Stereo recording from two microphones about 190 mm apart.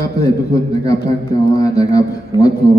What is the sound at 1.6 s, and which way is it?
Speech, 20° left (ahead or behind).